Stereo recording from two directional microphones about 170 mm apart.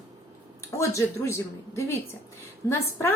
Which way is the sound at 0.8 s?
15° left (ahead or behind).